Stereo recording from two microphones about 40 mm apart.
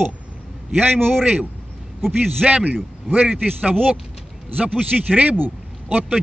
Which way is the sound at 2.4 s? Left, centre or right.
Right.